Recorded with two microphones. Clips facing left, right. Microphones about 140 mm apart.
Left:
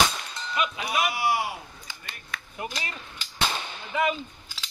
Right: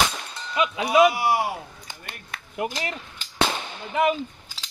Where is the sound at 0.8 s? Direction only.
45° right (ahead or behind); by 2.7 s 65° right (ahead or behind).